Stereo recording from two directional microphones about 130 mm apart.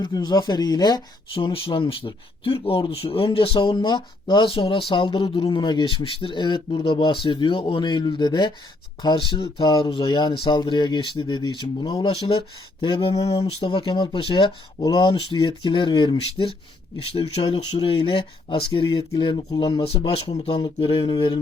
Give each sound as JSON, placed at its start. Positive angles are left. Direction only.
{"t": 0.0, "sound": "speech", "side_deg": 30}
{"t": 1.5, "sound": "speech", "side_deg": 45}